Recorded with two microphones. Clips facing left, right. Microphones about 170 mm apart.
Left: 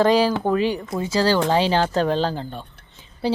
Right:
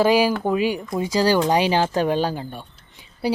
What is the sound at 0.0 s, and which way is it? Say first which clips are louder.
Speech: even; 10° right (ahead or behind).